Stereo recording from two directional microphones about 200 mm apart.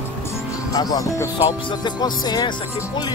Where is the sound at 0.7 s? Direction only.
20° left (ahead or behind).